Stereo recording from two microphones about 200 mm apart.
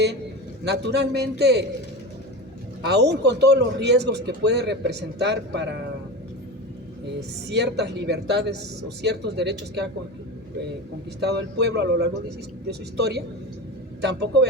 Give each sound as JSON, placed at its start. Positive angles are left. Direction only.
{"t": 0.7, "sound": "speech", "side_deg": -55}
{"t": 2.8, "sound": "speech", "side_deg": -55}
{"t": 7.2, "sound": "speech", "side_deg": -55}
{"t": 11.2, "sound": "speech", "side_deg": -55}